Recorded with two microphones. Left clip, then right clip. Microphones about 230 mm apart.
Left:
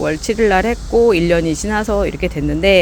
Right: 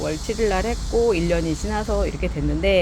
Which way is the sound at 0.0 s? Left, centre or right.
Left.